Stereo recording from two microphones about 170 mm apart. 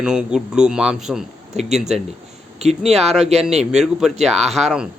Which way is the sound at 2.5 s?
40° right (ahead or behind).